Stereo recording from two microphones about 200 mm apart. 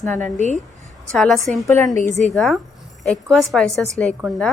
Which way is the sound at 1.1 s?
Centre (ahead or behind).